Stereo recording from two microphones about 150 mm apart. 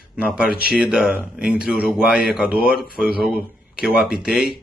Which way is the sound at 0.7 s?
5° right (ahead or behind).